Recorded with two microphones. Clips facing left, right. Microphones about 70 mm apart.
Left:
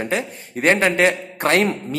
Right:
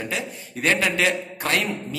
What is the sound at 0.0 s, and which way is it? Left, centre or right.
A man's voice, left.